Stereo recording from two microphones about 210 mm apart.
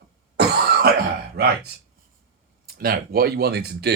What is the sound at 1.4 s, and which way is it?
Speech, 50° right (ahead or behind).